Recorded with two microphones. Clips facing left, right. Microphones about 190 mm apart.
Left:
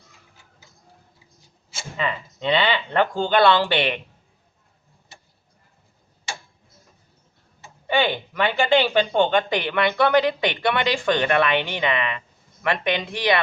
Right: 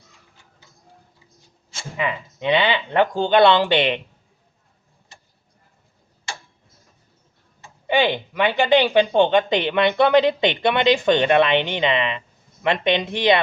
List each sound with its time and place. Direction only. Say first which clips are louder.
2.0 s speech: right 2 dB; 15° right (ahead or behind)
7.9 s speech: right 2 dB; 20° right (ahead or behind)